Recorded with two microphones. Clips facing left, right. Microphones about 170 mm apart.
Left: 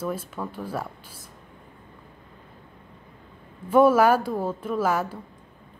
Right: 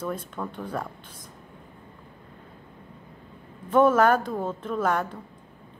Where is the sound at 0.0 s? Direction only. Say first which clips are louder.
Left 1 dB; 5° left (ahead or behind).